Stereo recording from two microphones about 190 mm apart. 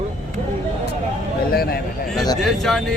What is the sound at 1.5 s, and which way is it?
Speech, 50° left (ahead or behind).